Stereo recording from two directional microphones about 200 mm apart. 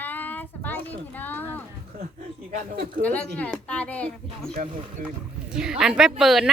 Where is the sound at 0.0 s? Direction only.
10° left (ahead or behind).